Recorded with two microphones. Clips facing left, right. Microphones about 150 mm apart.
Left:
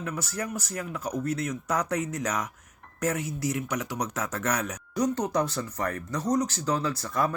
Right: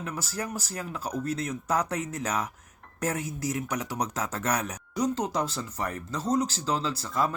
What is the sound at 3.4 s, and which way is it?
Speech, 35° right (ahead or behind).